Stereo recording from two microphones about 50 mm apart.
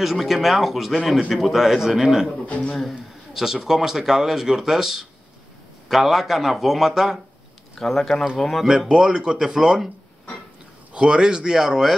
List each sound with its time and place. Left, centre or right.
0.0 s a man's voice: centre
2.4 s a man's voice: left
2.9 s a man's voice: centre
7.7 s a man's voice: centre
8.6 s speech: centre
10.9 s speech: centre